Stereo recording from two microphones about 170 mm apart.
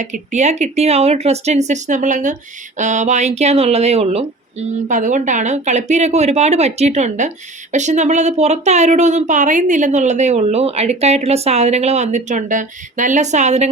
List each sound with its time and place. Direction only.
0.0 s speech: 45° right (ahead or behind)